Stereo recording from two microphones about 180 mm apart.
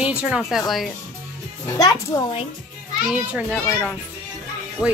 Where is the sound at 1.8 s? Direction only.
20° left (ahead or behind).